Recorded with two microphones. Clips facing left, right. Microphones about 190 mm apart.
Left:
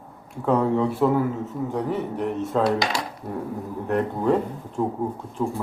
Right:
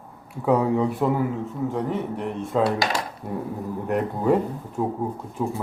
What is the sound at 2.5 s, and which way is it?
Coin, 5° right (ahead or behind).